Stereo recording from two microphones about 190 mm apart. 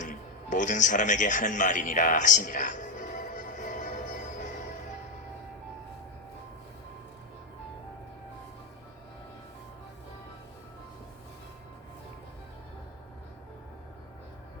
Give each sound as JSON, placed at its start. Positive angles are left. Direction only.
{"t": 0.0, "sound": "music", "side_deg": 40}